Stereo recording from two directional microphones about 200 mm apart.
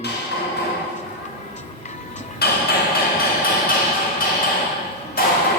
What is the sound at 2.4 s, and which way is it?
Music, 50° left (ahead or behind).